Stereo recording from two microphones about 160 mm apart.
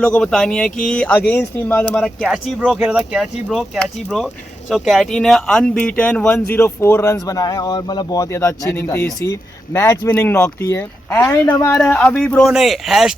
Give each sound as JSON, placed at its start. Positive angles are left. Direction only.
{"t": 0.0, "sound": "speech", "side_deg": 5}
{"t": 2.2, "sound": "speech", "side_deg": -5}
{"t": 11.8, "sound": "speech", "side_deg": 5}